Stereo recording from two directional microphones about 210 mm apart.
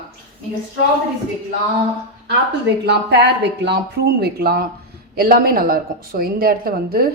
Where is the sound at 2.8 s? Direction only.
55° right (ahead or behind).